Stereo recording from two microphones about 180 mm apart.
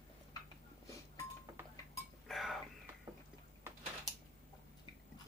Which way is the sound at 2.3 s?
Centre (ahead or behind).